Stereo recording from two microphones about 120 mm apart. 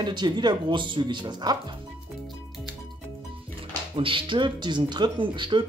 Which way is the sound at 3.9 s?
45° right (ahead or behind).